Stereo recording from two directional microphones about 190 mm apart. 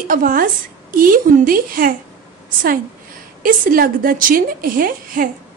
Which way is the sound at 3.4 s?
50° right (ahead or behind).